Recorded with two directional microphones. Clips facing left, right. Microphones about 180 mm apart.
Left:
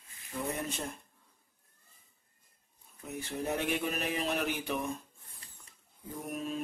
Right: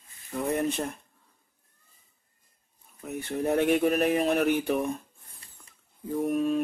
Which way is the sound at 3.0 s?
60° right (ahead or behind).